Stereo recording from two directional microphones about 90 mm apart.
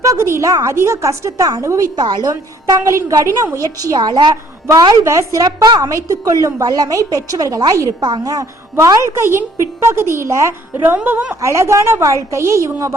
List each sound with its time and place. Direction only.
0.0 s a woman's voice: 35° right (ahead or behind)
2.0 s a woman's voice: 55° right (ahead or behind)
2.3 s a woman's voice: 35° right (ahead or behind)
3.8 s a woman's voice: 50° right (ahead or behind)
5.0 s a woman's voice: 35° right (ahead or behind)
9.0 s a woman's voice: 30° right (ahead or behind)
10.9 s a woman's voice: 15° right (ahead or behind)
11.3 s a woman's voice: 35° right (ahead or behind)